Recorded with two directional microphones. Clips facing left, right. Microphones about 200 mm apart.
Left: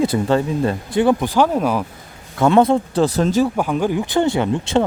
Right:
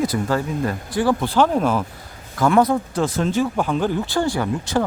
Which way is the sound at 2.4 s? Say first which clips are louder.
Left 3 dB; 25° left (ahead or behind).